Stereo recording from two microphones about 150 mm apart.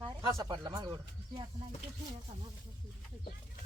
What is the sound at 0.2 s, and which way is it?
Speech, 20° right (ahead or behind).